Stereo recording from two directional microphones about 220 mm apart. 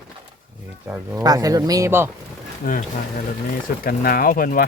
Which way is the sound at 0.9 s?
5° right (ahead or behind).